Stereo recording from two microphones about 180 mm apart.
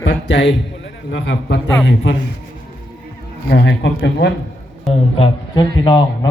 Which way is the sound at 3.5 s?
75° left (ahead or behind).